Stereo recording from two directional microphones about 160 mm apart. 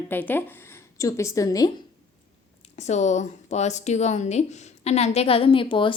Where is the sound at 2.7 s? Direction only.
45° left (ahead or behind).